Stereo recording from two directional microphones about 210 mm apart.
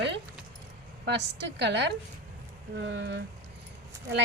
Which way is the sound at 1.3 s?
55° right (ahead or behind).